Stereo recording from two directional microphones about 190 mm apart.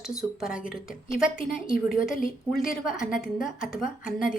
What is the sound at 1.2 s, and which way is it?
A woman's voice, 45° left (ahead or behind).